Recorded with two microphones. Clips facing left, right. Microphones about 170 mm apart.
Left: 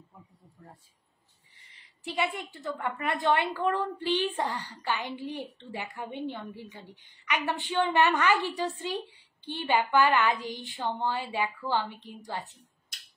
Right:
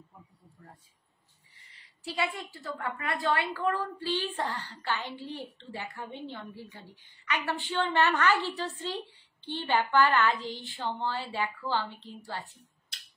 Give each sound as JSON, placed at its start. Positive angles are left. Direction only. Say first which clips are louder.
{"t": 1.7, "sound": "a woman's voice", "louder": "left 1 dB", "side_deg": 20}